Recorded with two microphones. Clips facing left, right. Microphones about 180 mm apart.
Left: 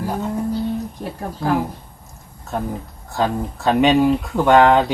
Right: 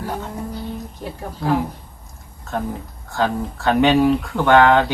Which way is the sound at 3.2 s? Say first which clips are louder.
Even; 15° left (ahead or behind).